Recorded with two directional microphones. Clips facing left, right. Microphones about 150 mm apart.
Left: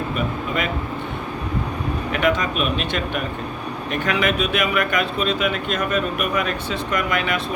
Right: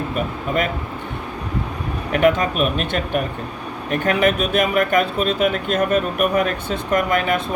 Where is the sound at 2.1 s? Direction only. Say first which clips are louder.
Right 5 dB; 45° right (ahead or behind).